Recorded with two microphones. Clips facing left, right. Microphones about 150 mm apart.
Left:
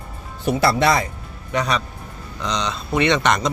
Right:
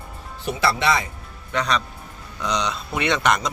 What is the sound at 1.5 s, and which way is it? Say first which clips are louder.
Speech: left 2 dB; 10° left (ahead or behind).